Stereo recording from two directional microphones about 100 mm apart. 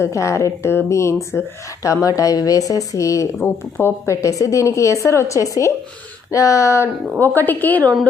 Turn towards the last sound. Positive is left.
turn(degrees=20)  # may be behind; listen again after turning